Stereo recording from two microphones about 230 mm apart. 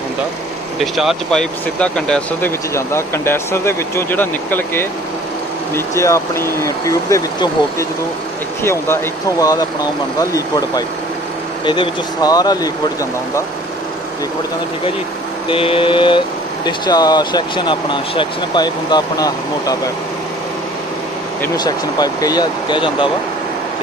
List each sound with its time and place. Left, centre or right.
0.7 s speech: centre
8.6 s speech: centre
15.4 s mantra: left
16.6 s speech: centre
21.4 s speech: centre